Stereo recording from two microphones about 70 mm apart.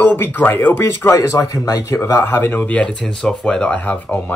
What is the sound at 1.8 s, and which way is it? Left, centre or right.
Speech, left.